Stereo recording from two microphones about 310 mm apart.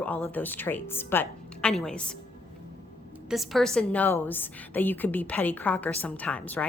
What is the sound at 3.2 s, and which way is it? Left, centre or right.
A woman's voice, centre.